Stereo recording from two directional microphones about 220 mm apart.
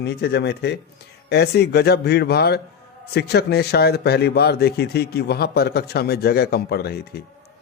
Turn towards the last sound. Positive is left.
turn(degrees=45)  # may be behind; listen again after turning